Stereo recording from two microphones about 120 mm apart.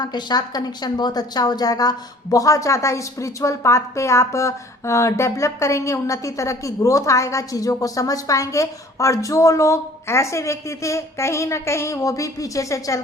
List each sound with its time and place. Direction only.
0.0 s a woman's voice: 35° left (ahead or behind)